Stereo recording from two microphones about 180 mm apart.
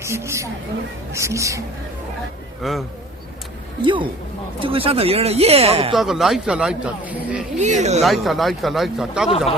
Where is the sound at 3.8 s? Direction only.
25° right (ahead or behind).